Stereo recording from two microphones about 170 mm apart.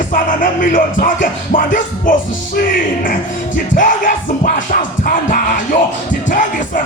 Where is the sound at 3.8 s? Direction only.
50° left (ahead or behind).